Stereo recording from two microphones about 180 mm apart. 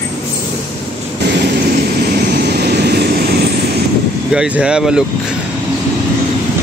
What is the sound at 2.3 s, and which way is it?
Vehicle, 65° right (ahead or behind).